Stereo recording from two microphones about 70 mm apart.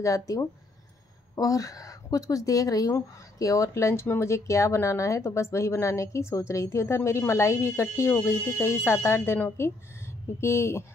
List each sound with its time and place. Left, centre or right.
0.0 s speech: left